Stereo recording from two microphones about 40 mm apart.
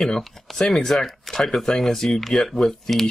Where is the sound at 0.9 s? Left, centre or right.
Centre.